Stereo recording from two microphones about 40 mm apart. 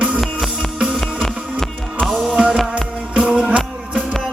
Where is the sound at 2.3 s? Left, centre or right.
Right.